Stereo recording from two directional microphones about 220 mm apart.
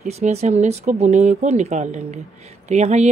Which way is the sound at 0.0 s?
30° right (ahead or behind).